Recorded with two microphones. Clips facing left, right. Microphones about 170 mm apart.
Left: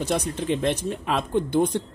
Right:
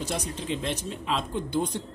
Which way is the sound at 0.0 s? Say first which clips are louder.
Left 6 dB; 60° left (ahead or behind).